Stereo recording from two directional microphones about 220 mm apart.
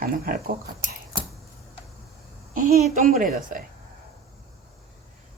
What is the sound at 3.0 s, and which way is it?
Speech, 40° right (ahead or behind).